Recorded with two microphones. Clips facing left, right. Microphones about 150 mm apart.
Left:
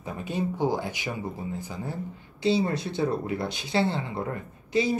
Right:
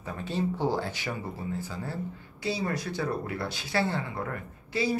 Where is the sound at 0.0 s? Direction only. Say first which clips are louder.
Left 1 dB; 15° left (ahead or behind).